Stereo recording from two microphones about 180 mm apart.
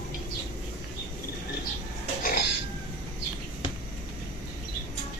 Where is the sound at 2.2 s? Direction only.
60° left (ahead or behind).